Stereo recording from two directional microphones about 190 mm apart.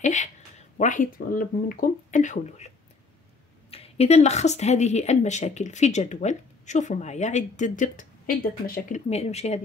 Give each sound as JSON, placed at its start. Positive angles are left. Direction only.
{"t": 0.0, "sound": "a woman's voice", "side_deg": 40}
{"t": 3.7, "sound": "speech", "side_deg": 30}
{"t": 9.1, "sound": "speech", "side_deg": 35}